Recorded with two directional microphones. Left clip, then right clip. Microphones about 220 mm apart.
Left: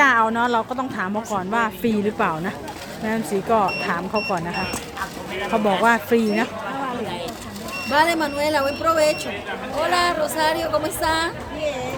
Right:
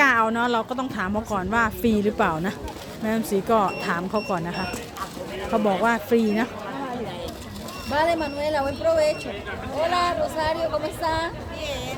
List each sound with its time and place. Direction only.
0.0 s a woman's voice: 10° right (ahead or behind)
5.6 s speech: 5° right (ahead or behind)
7.9 s speech: 55° left (ahead or behind)